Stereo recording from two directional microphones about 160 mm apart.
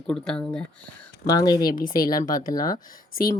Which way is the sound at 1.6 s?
60° left (ahead or behind).